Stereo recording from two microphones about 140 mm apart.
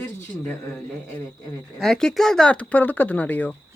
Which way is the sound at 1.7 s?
Centre (ahead or behind).